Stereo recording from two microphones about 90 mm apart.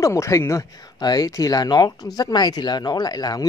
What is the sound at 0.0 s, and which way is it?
Speech, 35° left (ahead or behind).